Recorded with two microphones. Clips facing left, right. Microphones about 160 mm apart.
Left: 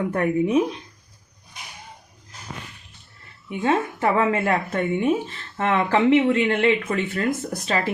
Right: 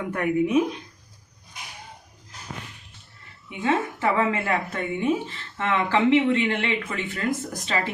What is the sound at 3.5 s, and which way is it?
Speech, 40° left (ahead or behind).